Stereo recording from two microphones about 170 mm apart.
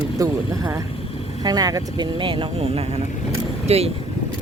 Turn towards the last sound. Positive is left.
turn(degrees=-40)  # may be behind; listen again after turning